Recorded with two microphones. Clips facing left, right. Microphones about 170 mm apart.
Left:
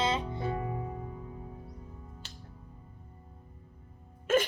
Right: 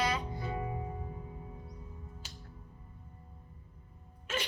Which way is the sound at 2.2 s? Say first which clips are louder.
Left 1 dB; 10° right (ahead or behind).